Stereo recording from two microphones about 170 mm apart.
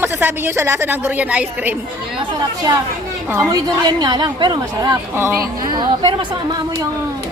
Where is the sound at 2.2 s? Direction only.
25° right (ahead or behind).